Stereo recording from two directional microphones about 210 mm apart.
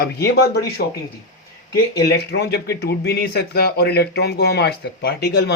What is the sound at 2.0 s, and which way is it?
Speech, 50° left (ahead or behind).